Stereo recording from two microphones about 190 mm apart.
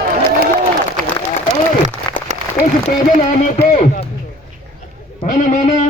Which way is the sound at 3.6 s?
40° left (ahead or behind).